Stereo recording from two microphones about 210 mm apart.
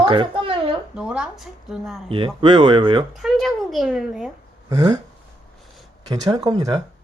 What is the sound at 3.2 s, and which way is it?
A woman's voice, centre (ahead or behind).